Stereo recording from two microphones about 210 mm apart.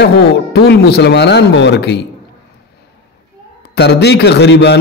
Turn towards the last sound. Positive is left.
turn(degrees=55)  # may be behind; listen again after turning